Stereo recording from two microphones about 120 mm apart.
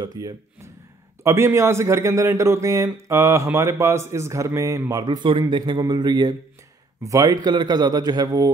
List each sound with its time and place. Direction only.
0.0 s a man's voice: 30° right (ahead or behind)
5.0 s a man's voice: 40° right (ahead or behind)